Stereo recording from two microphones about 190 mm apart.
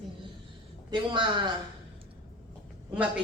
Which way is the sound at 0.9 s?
25° right (ahead or behind).